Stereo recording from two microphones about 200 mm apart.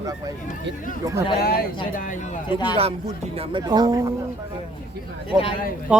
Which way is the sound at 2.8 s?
30° right (ahead or behind).